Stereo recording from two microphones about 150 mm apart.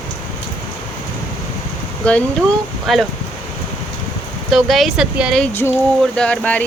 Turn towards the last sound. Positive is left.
turn(degrees=10)  # may be behind; listen again after turning